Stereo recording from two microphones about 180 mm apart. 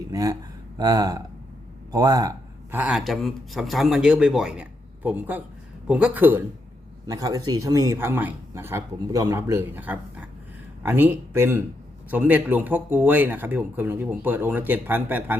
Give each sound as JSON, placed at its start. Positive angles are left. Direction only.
{"t": 0.0, "sound": "speech", "side_deg": -20}
{"t": 2.7, "sound": "a man's voice", "side_deg": -5}